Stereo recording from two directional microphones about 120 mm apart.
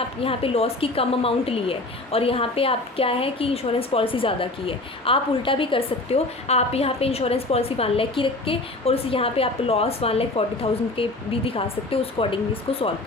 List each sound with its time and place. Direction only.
0.2 s a woman's voice: 50° left (ahead or behind)